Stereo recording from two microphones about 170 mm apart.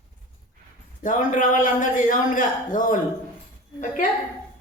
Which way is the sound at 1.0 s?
50° left (ahead or behind).